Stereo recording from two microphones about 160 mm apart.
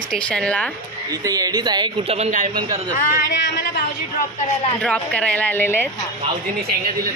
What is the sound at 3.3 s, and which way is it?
Speech, 85° left.